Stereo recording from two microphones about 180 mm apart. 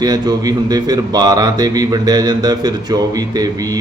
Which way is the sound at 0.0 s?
20° right (ahead or behind).